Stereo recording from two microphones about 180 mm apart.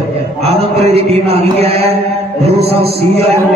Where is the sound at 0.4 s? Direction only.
35° right (ahead or behind).